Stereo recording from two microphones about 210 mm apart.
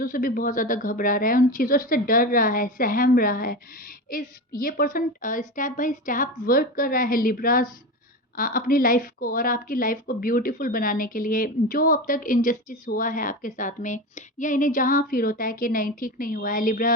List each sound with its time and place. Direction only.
0.0 s a woman's voice: 40° left (ahead or behind)